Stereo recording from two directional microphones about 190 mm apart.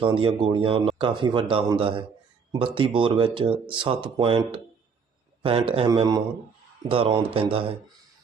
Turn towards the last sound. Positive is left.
turn(degrees=-30)  # may be behind; listen again after turning